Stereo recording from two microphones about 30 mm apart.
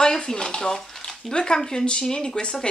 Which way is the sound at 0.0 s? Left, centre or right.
Left.